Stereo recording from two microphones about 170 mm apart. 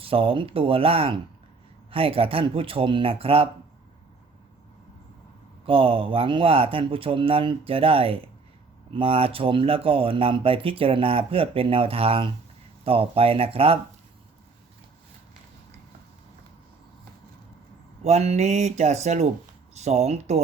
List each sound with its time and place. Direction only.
0.0 s speech: 30° right (ahead or behind)
5.6 s speech: 30° right (ahead or behind)
18.0 s speech: 40° right (ahead or behind)